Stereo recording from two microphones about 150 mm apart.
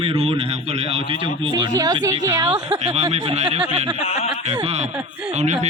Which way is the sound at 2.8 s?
50° right (ahead or behind).